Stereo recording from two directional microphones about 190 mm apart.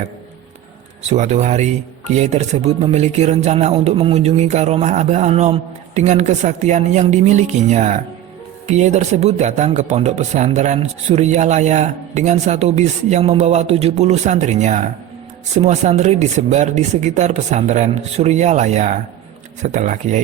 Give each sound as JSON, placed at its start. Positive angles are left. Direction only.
{"t": 1.1, "sound": "speech", "side_deg": -35}